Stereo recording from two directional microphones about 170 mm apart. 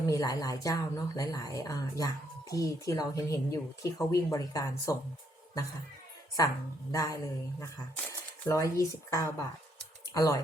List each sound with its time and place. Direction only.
0.1 s a woman's voice: 20° left (ahead or behind)
6.4 s a woman's voice: 20° left (ahead or behind)
8.4 s a woman's voice: 20° left (ahead or behind)